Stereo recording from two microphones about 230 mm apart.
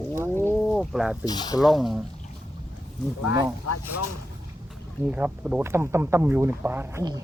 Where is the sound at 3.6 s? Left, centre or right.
Left.